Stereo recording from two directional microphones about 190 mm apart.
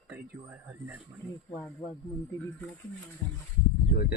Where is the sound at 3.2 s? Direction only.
10° left (ahead or behind).